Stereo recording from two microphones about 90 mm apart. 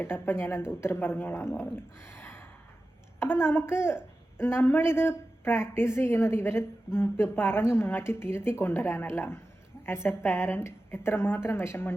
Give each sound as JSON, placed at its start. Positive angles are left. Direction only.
{"t": 0.0, "sound": "a woman's voice", "side_deg": 25}